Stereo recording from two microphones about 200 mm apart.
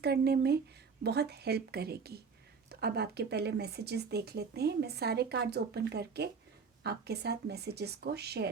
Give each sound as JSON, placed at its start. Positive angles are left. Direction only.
{"t": 0.0, "sound": "speech", "side_deg": -55}